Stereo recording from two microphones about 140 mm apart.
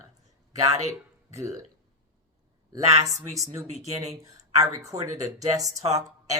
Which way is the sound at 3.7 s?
55° right (ahead or behind).